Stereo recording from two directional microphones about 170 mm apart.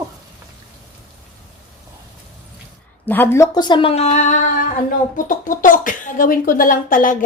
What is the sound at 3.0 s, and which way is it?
Speech, 10° left (ahead or behind).